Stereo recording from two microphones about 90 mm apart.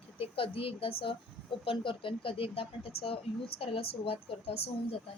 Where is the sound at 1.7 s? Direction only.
75° left (ahead or behind); by 4.1 s 90° left.